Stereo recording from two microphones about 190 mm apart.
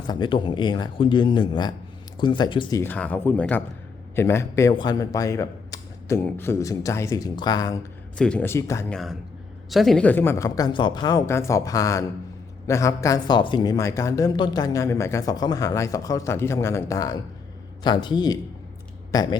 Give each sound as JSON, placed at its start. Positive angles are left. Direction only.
{"t": 0.1, "sound": "speech", "side_deg": 25}
{"t": 8.2, "sound": "speech", "side_deg": 5}
{"t": 8.9, "sound": "a man's voice", "side_deg": 0}